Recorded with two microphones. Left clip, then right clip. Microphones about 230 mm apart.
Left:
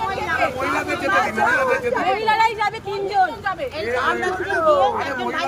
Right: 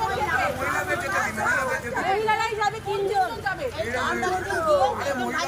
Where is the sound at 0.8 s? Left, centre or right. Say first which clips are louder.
Left 5 dB; left.